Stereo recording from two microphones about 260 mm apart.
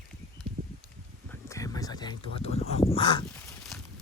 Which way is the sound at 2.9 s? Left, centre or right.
Centre.